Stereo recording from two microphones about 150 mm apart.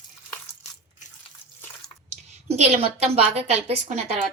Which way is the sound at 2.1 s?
45° right (ahead or behind).